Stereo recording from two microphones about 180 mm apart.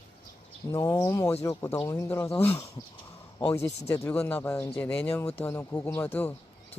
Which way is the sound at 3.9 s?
10° left (ahead or behind).